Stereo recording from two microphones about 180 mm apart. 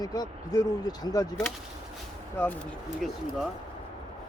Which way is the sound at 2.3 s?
10° left (ahead or behind).